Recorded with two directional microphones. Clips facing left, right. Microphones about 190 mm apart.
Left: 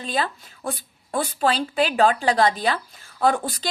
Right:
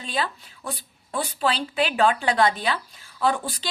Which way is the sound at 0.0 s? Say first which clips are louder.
Left 2 dB; 45° left (ahead or behind).